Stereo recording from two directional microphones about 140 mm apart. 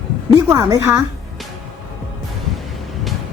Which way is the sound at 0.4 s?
20° right (ahead or behind).